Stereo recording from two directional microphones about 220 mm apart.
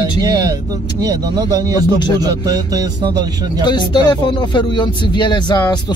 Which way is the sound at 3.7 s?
20° left (ahead or behind).